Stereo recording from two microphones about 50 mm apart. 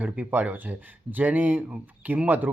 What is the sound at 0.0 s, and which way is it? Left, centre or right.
Speech, right.